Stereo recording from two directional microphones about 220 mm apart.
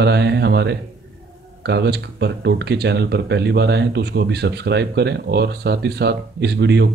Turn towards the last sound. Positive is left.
turn(degrees=-50)  # may be behind; listen again after turning